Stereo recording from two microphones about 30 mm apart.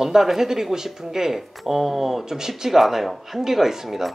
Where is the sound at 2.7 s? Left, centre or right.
Centre.